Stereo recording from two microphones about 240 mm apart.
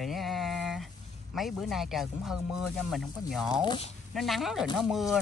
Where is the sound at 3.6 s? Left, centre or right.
Centre.